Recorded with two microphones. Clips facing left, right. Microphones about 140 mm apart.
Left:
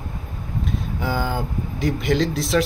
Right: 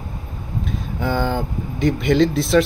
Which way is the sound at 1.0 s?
5° left (ahead or behind).